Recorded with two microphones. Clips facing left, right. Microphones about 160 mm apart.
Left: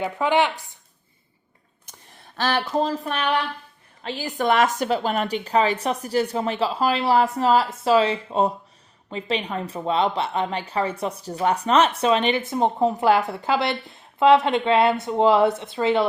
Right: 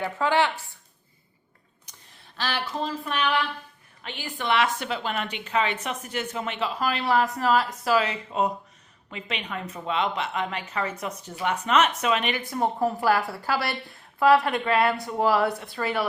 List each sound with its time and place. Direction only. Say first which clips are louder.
0.0 s speech: left 3 dB; 15° left (ahead or behind)
1.9 s speech: left 5 dB; 45° left (ahead or behind); by 16.0 s 20° left (ahead or behind)